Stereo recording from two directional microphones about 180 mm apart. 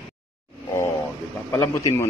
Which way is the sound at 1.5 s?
15° left (ahead or behind).